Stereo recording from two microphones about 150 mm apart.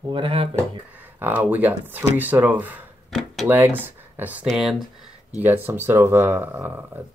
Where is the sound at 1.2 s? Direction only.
15° right (ahead or behind).